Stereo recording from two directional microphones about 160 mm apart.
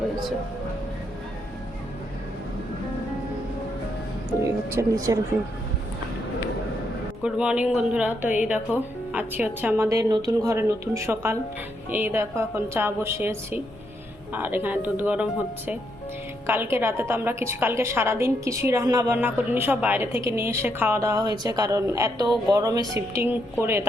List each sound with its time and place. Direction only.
4.7 s speech: 20° right (ahead or behind)
7.2 s a woman's voice: 5° right (ahead or behind)
16.5 s a woman's voice: 15° right (ahead or behind)